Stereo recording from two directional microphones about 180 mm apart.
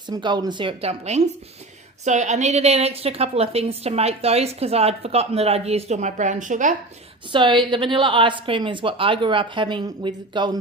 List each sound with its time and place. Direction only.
0.1 s a woman's voice: 25° right (ahead or behind); by 6.7 s 45° right (ahead or behind)
7.3 s a woman's voice: 25° right (ahead or behind)